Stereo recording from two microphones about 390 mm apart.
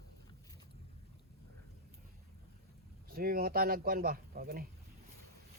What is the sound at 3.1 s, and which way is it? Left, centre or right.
Speech, right.